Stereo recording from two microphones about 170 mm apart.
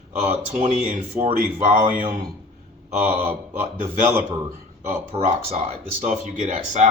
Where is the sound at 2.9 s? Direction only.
40° right (ahead or behind).